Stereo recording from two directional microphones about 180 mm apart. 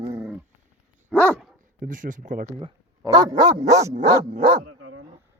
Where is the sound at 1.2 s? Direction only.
Centre (ahead or behind).